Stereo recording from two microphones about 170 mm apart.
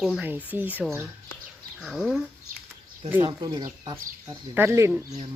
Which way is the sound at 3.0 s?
10° right (ahead or behind).